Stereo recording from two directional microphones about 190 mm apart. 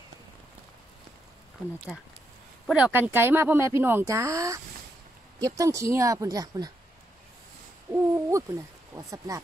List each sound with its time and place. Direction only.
1.9 s speech: centre (ahead or behind)
2.7 s speech: 10° right (ahead or behind)
5.6 s speech: 15° right (ahead or behind)
7.9 s owl: 15° right (ahead or behind)
8.9 s speech: 15° right (ahead or behind)